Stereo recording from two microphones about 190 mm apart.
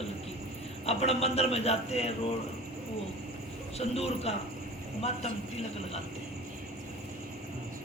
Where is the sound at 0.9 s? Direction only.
30° left (ahead or behind).